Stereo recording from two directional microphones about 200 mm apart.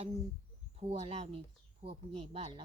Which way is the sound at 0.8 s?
30° right (ahead or behind).